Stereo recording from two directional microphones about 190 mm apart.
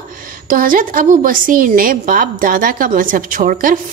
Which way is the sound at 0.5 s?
45° right (ahead or behind).